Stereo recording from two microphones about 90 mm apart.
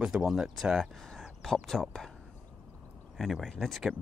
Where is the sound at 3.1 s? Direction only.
Centre (ahead or behind).